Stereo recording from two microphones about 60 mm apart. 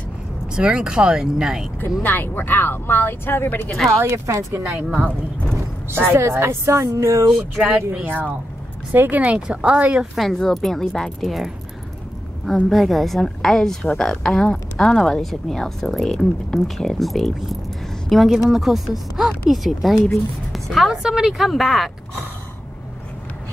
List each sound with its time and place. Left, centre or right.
0.6 s speech: centre
2.0 s speech: left
3.7 s a woman's voice: centre
4.3 s speech: right
5.9 s a woman's voice: right
6.2 s a woman's voice: right
7.2 s a woman's voice: centre
8.9 s a woman's voice: right
9.2 s a woman's voice: centre
10.1 s a woman's voice: centre
12.7 s a woman's voice: centre